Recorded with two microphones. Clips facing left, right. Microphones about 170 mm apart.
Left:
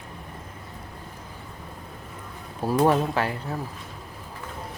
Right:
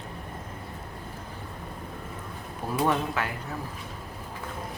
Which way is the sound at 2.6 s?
30° left (ahead or behind).